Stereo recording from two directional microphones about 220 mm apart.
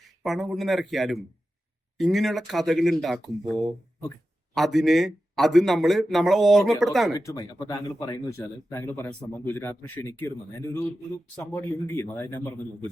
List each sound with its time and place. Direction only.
0.0 s a man's voice: centre (ahead or behind)
7.1 s speech: 15° left (ahead or behind)
11.5 s speech: 10° left (ahead or behind)